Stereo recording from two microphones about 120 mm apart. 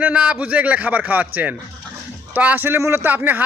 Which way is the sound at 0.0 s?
10° right (ahead or behind).